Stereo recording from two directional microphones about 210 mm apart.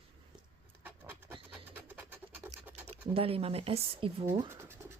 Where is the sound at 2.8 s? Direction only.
10° right (ahead or behind).